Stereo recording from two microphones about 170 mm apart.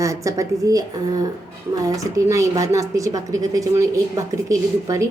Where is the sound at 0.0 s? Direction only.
20° right (ahead or behind).